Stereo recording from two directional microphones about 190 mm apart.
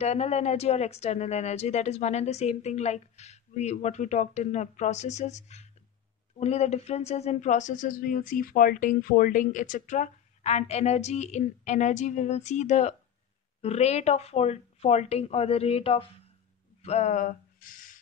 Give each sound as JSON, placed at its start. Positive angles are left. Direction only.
{"t": 0.0, "sound": "speech", "side_deg": 35}